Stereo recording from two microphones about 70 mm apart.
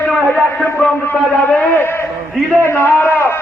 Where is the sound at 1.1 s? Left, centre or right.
Left.